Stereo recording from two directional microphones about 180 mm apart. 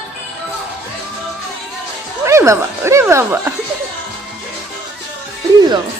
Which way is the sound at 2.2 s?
15° right (ahead or behind).